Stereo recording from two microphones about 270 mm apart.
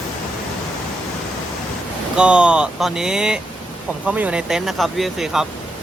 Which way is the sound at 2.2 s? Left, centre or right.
Centre.